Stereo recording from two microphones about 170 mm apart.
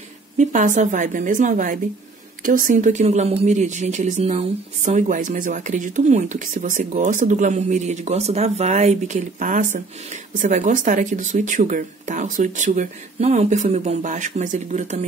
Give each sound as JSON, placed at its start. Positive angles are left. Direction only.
{"t": 0.4, "sound": "speech", "side_deg": -45}